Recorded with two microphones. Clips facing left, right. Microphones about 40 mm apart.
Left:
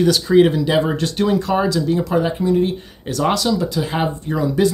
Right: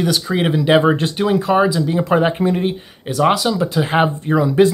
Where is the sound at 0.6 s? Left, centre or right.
Right; by 2.0 s centre.